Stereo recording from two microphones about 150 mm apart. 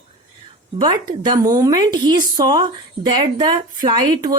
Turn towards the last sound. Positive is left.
turn(degrees=-25)  # may be behind; listen again after turning